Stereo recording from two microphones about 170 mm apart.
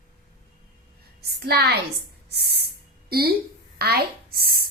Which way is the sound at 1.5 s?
70° right (ahead or behind).